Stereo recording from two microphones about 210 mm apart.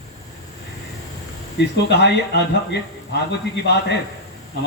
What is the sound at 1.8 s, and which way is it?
Speech, 55° left (ahead or behind).